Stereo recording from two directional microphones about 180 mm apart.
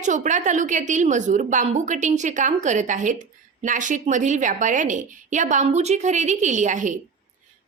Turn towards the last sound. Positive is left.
turn(degrees=-45)  # may be behind; listen again after turning